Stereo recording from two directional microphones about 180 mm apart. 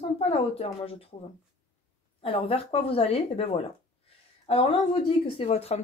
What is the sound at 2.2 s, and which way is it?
Speech, 30° left (ahead or behind).